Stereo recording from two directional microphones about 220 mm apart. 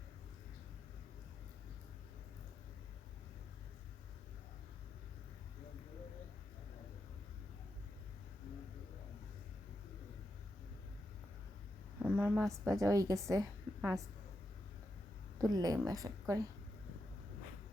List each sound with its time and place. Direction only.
12.0 s a woman's voice: 10° right (ahead or behind)
15.4 s a woman's voice: 15° right (ahead or behind)